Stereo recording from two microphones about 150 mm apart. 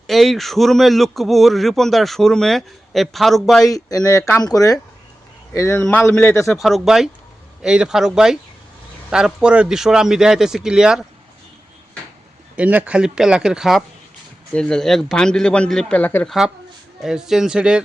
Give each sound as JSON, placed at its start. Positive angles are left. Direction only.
{"t": 0.1, "sound": "a man's voice", "side_deg": 0}
{"t": 3.7, "sound": "speech", "side_deg": 25}
{"t": 5.5, "sound": "speech", "side_deg": 15}
{"t": 6.5, "sound": "a man's voice", "side_deg": 0}
{"t": 12.5, "sound": "a man's voice", "side_deg": -10}
{"t": 17.0, "sound": "a man's voice", "side_deg": -5}